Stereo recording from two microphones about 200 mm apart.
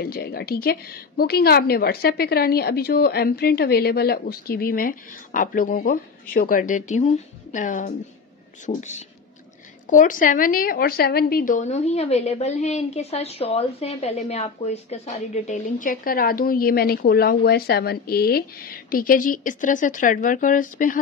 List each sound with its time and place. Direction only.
0.0 s a woman's voice: 50° left (ahead or behind)